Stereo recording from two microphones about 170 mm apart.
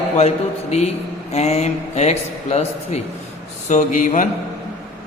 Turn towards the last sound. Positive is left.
turn(degrees=45)  # may be behind; listen again after turning